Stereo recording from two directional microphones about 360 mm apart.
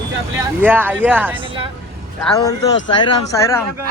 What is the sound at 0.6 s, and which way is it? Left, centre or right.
Speech, centre.